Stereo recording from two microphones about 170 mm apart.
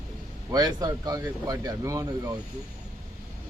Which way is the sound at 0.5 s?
20° right (ahead or behind).